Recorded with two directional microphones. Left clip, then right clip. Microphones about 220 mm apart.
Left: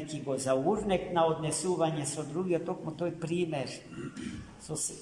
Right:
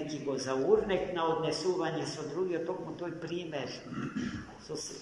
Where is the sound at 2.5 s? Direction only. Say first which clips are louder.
Left 3 dB; 60° left (ahead or behind).